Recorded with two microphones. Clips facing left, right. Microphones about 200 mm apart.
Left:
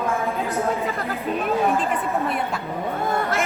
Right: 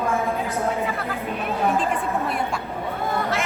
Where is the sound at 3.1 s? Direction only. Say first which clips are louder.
Left 1 dB; 50° left (ahead or behind).